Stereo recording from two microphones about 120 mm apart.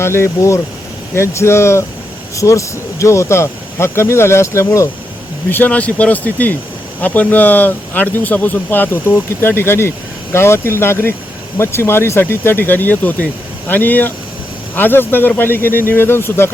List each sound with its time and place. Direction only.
0.0 s speech: 20° left (ahead or behind)